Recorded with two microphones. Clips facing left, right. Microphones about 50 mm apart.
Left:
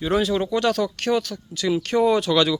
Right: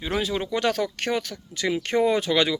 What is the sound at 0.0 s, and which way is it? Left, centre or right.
Speech, centre.